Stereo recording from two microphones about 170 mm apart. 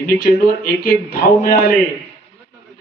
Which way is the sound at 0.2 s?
60° left (ahead or behind).